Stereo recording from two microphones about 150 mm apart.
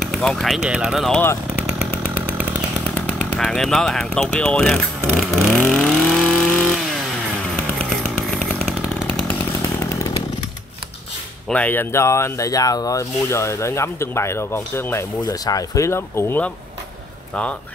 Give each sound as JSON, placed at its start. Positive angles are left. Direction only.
{"t": 0.0, "sound": "speech", "side_deg": 0}
{"t": 2.9, "sound": "speech", "side_deg": 5}
{"t": 5.7, "sound": "vehicle", "side_deg": 5}
{"t": 8.0, "sound": "chainsaw", "side_deg": 5}
{"t": 11.4, "sound": "speech", "side_deg": 10}